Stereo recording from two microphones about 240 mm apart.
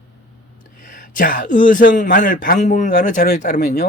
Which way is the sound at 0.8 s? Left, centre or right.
Left.